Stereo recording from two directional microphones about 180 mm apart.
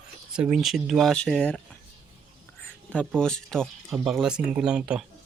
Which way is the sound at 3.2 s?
5° left (ahead or behind).